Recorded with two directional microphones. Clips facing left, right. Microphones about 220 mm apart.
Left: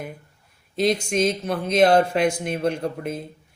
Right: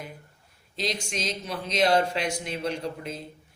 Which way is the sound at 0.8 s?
55° left (ahead or behind).